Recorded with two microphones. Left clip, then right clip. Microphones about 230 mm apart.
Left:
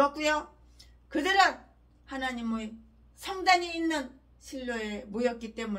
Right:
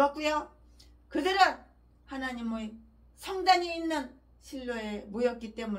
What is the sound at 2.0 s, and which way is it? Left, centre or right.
A woman's voice, centre.